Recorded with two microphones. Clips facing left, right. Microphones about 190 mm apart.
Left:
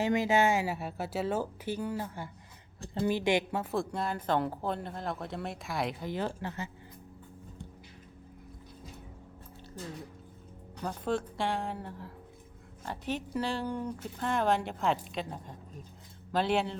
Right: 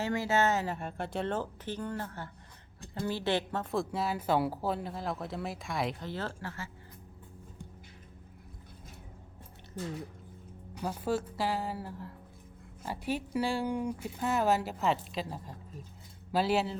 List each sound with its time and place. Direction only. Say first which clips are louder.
0.0 s a woman's voice: left 3 dB; 15° left (ahead or behind); by 6.0 s centre (ahead or behind)
6.0 s speech: left 4 dB; 15° left (ahead or behind)
10.8 s a woman's voice: even; 10° right (ahead or behind)